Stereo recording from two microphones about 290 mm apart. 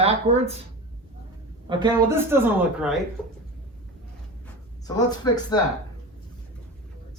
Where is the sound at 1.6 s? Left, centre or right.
Centre.